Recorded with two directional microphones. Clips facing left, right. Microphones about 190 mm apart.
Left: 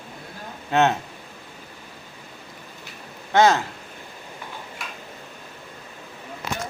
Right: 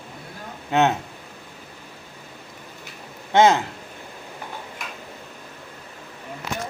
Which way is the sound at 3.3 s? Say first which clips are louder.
Right 1 dB; 20° right (ahead or behind).